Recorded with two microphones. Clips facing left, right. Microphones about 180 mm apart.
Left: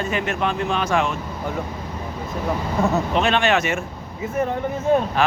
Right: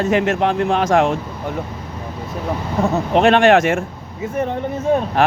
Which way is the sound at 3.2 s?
60° right (ahead or behind).